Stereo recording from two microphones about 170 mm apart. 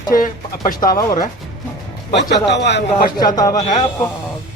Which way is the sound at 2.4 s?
90° left.